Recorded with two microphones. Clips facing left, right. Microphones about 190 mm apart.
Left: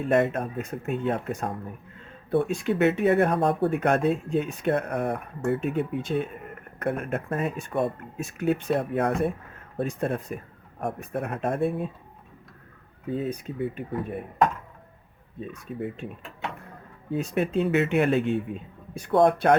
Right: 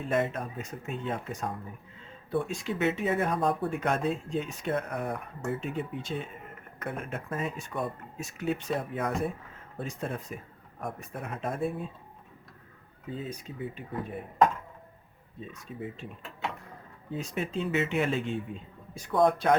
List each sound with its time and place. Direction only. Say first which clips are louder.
0.0 s speech: left 6 dB; 60° left (ahead or behind)
13.1 s speech: left 8 dB; 60° left (ahead or behind)
15.4 s speech: left 6 dB; 60° left (ahead or behind)
17.1 s speech: left 7 dB; 60° left (ahead or behind)